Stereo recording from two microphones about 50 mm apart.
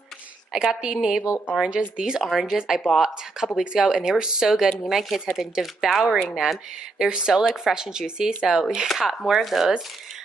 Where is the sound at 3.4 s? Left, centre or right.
Centre.